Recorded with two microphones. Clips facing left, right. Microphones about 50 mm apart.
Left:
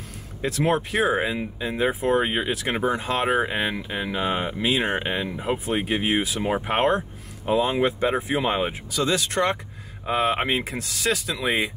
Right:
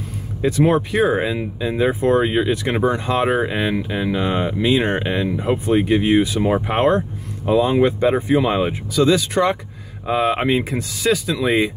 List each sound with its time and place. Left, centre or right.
0.9 s speech: centre